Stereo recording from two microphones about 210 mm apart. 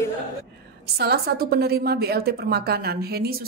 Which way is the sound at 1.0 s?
50° right (ahead or behind).